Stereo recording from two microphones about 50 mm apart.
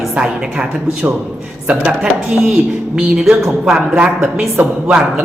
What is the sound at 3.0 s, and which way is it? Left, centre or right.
Mantra, right.